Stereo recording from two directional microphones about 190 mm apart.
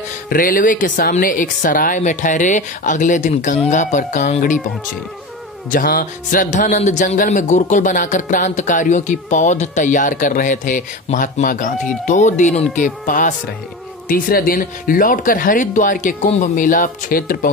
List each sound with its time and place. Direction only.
0.3 s speech: 45° left (ahead or behind)
5.7 s speech: 50° left (ahead or behind)